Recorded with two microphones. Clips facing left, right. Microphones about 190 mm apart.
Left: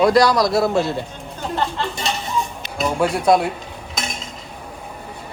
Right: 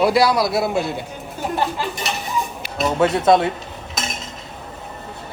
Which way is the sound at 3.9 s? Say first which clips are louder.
Even; 5° right (ahead or behind).